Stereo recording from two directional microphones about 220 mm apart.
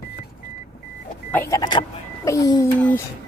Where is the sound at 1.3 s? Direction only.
10° left (ahead or behind).